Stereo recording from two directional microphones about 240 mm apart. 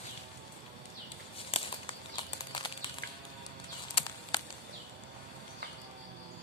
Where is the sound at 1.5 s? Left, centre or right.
Left.